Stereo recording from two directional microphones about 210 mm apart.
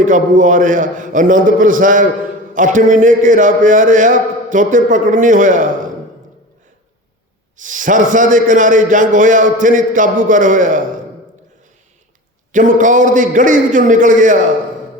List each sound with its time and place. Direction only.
0.0 s a man's voice: 40° right (ahead or behind)
7.5 s a man's voice: 40° right (ahead or behind)
12.5 s a man's voice: 35° right (ahead or behind)